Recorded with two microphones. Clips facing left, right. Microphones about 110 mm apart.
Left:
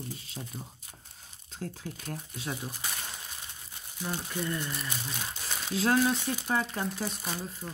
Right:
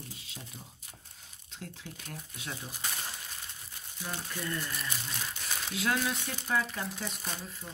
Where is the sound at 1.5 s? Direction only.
40° left (ahead or behind).